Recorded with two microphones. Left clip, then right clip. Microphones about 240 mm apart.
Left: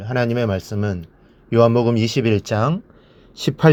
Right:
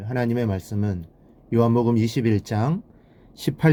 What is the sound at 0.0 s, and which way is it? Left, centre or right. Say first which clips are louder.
Speech: left 5 dB; centre.